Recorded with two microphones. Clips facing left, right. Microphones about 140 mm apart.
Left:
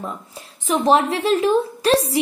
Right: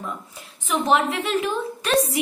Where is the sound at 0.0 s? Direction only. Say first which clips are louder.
Left 2 dB; 35° left (ahead or behind).